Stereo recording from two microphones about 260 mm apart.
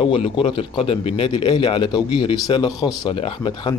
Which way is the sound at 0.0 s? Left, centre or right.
Centre.